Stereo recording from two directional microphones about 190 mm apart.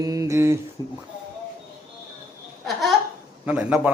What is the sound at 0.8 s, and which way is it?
Speech, 20° left (ahead or behind).